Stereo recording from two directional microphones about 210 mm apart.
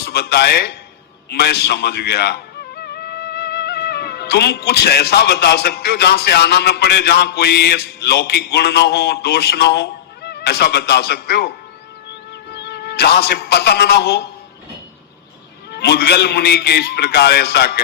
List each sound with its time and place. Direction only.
0.0 s a man's voice: 50° left (ahead or behind)
15.7 s a man's voice: 50° left (ahead or behind)